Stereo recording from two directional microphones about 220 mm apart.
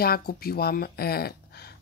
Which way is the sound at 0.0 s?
45° left (ahead or behind).